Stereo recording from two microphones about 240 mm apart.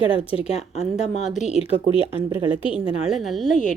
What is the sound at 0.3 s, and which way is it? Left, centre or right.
Speech, left.